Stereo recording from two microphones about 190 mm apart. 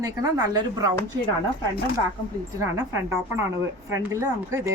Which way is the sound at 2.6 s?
15° right (ahead or behind).